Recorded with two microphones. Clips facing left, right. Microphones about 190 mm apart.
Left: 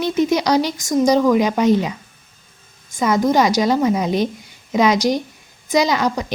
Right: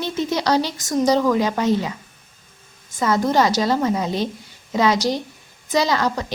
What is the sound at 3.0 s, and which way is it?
Speech, 15° left (ahead or behind).